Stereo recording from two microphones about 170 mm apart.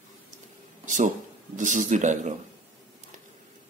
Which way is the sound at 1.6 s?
45° right (ahead or behind).